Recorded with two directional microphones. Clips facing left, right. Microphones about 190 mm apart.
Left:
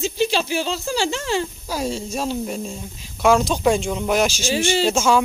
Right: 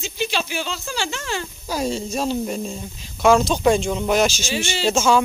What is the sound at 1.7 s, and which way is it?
Speech, 5° left (ahead or behind).